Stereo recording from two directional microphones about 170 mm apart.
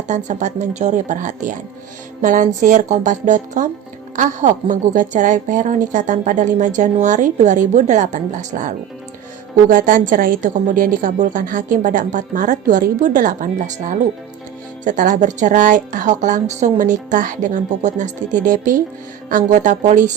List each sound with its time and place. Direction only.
0.1 s a woman's voice: 45° right (ahead or behind)